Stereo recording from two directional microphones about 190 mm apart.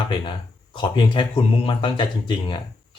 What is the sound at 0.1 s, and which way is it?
Speech, 25° left (ahead or behind).